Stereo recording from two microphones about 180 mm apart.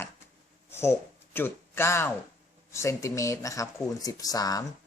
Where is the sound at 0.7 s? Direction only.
15° left (ahead or behind).